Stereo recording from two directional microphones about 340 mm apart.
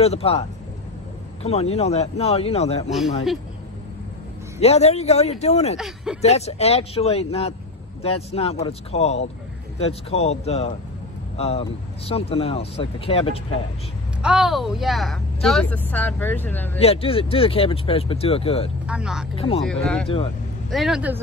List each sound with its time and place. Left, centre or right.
0.0 s speech: centre
4.6 s speech: centre
5.8 s speech: centre
6.2 s speech: centre
14.2 s speech: centre
16.7 s speech: centre
18.9 s speech: centre
19.3 s speech: centre
20.7 s speech: centre